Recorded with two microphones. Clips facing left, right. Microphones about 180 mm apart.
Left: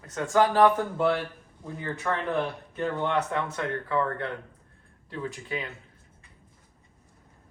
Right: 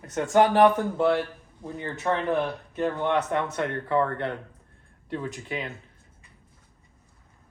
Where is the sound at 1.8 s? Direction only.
20° right (ahead or behind).